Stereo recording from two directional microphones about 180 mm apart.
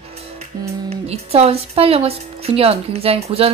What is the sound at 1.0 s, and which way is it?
Speech, 35° right (ahead or behind).